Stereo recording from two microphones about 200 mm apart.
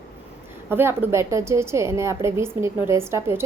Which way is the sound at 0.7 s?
10° right (ahead or behind).